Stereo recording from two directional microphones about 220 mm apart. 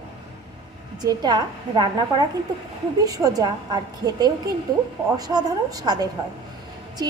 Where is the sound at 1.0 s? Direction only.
20° right (ahead or behind).